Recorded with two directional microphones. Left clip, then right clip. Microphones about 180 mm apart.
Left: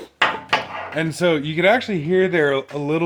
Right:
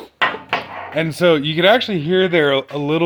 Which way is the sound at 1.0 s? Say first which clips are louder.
Right 5 dB; 45° right (ahead or behind).